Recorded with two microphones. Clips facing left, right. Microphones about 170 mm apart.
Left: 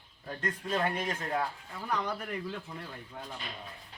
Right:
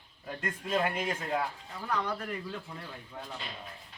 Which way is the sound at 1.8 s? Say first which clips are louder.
Even; 10° left (ahead or behind).